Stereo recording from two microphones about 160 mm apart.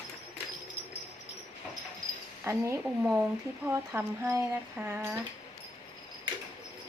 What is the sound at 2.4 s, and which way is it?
A woman's voice, 20° right (ahead or behind).